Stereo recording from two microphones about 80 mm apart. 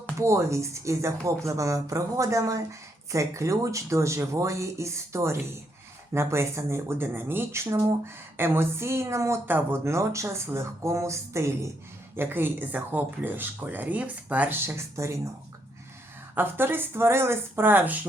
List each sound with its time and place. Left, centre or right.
0.2 s speech: right
9.5 s speech: right
16.3 s speech: right